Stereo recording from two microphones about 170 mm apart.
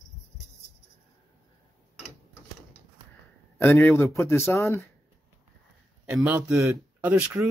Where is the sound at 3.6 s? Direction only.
10° left (ahead or behind).